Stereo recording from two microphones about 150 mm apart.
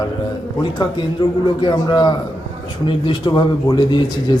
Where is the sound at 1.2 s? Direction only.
30° left (ahead or behind).